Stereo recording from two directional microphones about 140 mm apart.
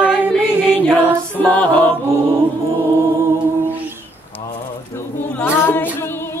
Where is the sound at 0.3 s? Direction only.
15° left (ahead or behind).